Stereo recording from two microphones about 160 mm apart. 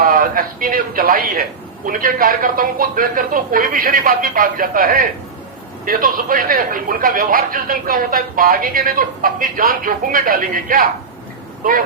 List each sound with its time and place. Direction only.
0.0 s a man's voice: 60° right (ahead or behind)